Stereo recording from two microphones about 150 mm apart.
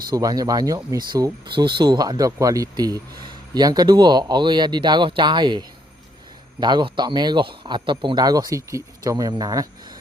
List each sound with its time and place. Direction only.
0.1 s speech: 25° right (ahead or behind)